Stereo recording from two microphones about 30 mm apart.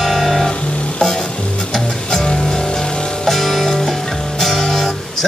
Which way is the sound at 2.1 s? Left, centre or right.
Left.